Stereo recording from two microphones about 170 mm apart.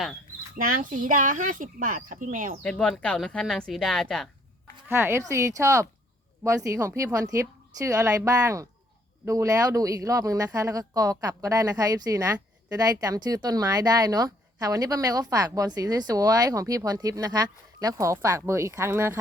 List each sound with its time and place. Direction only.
0.6 s speech: 55° right (ahead or behind)
2.6 s speech: 5° left (ahead or behind)
4.9 s speech: 15° right (ahead or behind)